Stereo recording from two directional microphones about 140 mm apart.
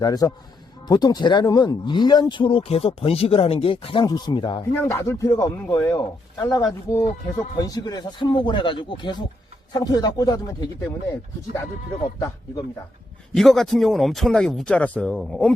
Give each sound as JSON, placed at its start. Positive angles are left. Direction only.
{"t": 0.0, "sound": "speech", "side_deg": 25}
{"t": 4.7, "sound": "speech", "side_deg": 20}
{"t": 13.3, "sound": "speech", "side_deg": 5}